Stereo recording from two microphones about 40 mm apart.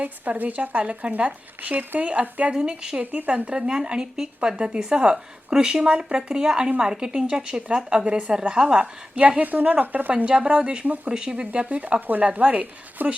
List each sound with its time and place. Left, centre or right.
0.0 s speech: right
2.4 s speech: right
3.0 s a woman's voice: right
3.2 s speech: right
9.4 s a woman's voice: right
10.2 s speech: right
10.8 s a woman's voice: right
11.1 s speech: right
12.3 s speech: right
13.0 s a woman's voice: right